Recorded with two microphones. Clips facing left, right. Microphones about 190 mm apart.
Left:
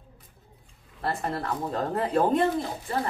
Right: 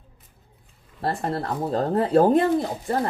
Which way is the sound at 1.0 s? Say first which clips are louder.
Right 3 dB; 35° right (ahead or behind).